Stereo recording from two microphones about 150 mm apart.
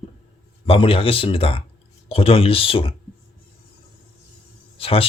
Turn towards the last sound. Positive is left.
turn(degrees=40)  # may be behind; listen again after turning